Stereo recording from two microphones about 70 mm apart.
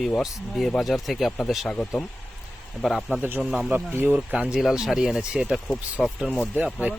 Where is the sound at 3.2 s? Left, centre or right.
Right.